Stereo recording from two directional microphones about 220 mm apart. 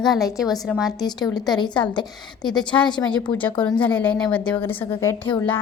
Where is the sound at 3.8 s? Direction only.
5° left (ahead or behind).